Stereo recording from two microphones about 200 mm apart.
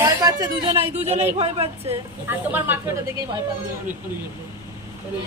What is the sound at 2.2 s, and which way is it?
Speech, 10° right (ahead or behind).